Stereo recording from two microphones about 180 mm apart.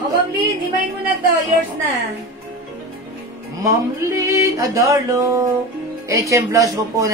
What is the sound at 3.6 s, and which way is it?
Speech, 15° right (ahead or behind).